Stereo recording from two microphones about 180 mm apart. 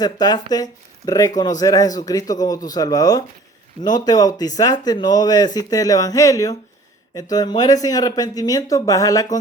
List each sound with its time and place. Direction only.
0.0 s speech: 20° left (ahead or behind)